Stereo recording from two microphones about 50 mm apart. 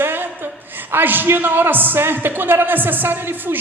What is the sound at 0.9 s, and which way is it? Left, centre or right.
A man's voice, right.